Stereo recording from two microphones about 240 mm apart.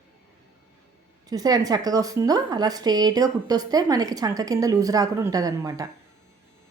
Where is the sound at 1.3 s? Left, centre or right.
Centre.